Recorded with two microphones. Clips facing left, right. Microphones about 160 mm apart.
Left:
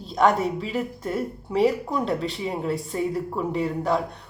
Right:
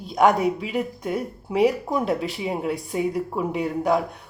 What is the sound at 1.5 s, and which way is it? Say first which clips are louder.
Speech: right 1 dB; 20° right (ahead or behind).